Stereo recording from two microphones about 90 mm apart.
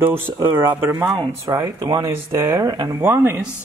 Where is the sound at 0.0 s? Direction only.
25° right (ahead or behind).